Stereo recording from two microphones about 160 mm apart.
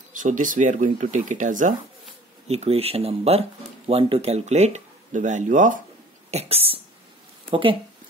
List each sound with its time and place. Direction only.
0.2 s speech: 55° right (ahead or behind)
2.4 s speech: 40° right (ahead or behind)
6.3 s speech: 40° right (ahead or behind)